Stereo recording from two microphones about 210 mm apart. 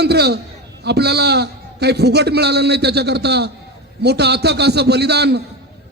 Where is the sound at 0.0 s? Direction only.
50° right (ahead or behind).